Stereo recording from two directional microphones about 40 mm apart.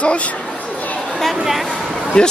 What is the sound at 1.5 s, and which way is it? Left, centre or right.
Speech, centre.